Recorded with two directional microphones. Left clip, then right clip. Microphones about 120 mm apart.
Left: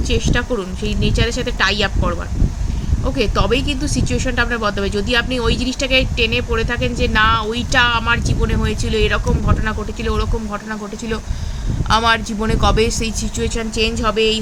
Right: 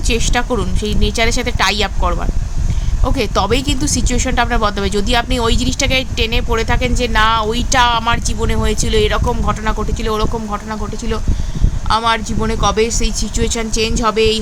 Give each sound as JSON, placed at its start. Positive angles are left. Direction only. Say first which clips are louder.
{"t": 0.1, "sound": "speech", "louder": "right 3 dB", "side_deg": -80}
{"t": 3.0, "sound": "speech", "louder": "right 2 dB", "side_deg": -85}
{"t": 11.9, "sound": "speech", "louder": "even", "side_deg": -15}
{"t": 13.4, "sound": "speech", "louder": "right 1 dB", "side_deg": -55}